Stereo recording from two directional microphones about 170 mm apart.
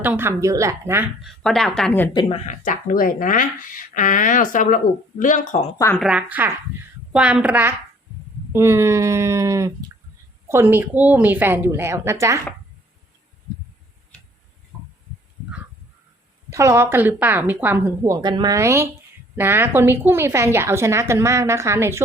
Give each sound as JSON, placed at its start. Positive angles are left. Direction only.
{"t": 0.0, "sound": "a woman's voice", "side_deg": -10}
{"t": 1.2, "sound": "a woman's voice", "side_deg": 5}
{"t": 2.3, "sound": "speech", "side_deg": 45}
{"t": 6.0, "sound": "a woman's voice", "side_deg": -5}
{"t": 16.5, "sound": "a woman's voice", "side_deg": -15}